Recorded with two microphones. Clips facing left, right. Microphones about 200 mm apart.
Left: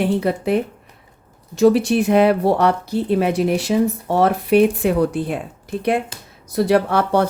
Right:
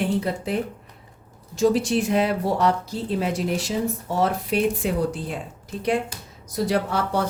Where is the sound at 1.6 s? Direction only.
65° left (ahead or behind).